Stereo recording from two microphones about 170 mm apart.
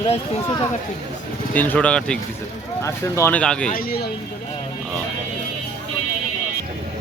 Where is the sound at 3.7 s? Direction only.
65° left (ahead or behind).